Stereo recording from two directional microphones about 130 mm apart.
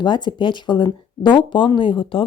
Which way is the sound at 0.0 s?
35° left (ahead or behind).